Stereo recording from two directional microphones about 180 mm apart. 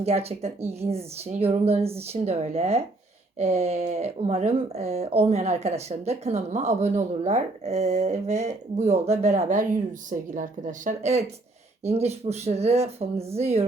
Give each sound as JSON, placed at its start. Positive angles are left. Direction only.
{"t": 0.0, "sound": "a woman's voice", "side_deg": -35}